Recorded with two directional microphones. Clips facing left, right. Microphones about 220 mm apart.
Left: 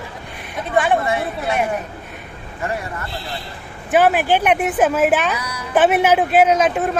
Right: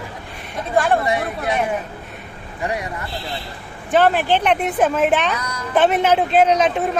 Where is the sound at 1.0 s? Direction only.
15° right (ahead or behind).